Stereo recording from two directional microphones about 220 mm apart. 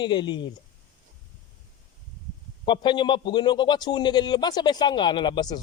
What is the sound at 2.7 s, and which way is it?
A man's voice, 20° left (ahead or behind).